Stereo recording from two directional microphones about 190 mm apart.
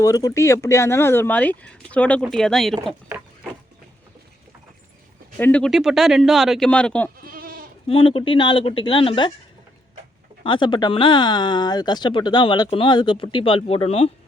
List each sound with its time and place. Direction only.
0.0 s speech: 20° left (ahead or behind); by 2.7 s centre (ahead or behind)
5.4 s speech: 5° left (ahead or behind)
7.2 s goat: 50° right (ahead or behind)
7.9 s speech: 30° left (ahead or behind)
10.4 s speech: 25° left (ahead or behind)